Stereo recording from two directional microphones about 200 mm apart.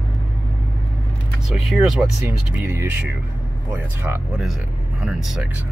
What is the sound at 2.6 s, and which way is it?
Speech, 10° right (ahead or behind).